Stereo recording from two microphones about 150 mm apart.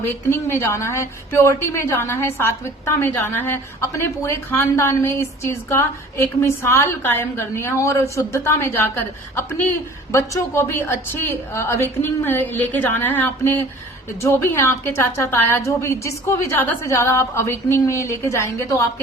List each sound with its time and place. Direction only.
0.0 s a woman's voice: 15° left (ahead or behind)